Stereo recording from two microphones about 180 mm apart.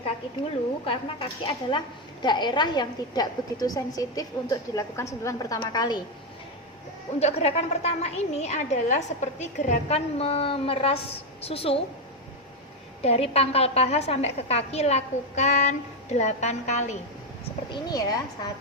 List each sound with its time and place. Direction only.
0.9 s a woman's voice: 30° left (ahead or behind)
7.2 s a woman's voice: 35° left (ahead or behind)
13.0 s a woman's voice: 35° left (ahead or behind)
17.7 s a woman's voice: 20° left (ahead or behind)